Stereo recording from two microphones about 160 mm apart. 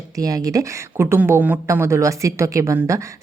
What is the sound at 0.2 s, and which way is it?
Speech, 20° right (ahead or behind).